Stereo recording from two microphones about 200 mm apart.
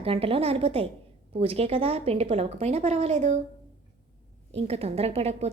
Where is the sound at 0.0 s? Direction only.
30° right (ahead or behind).